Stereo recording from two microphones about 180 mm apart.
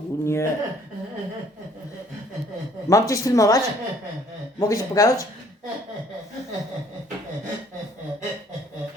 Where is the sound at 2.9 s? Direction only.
15° left (ahead or behind).